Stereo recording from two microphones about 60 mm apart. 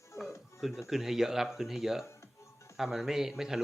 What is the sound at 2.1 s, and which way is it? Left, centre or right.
Music, left.